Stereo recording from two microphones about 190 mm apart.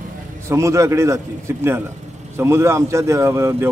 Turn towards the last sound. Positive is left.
turn(degrees=-15)  # may be behind; listen again after turning